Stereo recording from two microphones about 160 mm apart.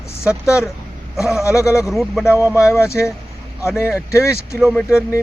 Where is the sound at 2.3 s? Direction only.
10° right (ahead or behind).